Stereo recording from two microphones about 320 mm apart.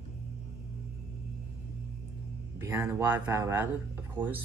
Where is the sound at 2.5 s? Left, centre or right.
Centre.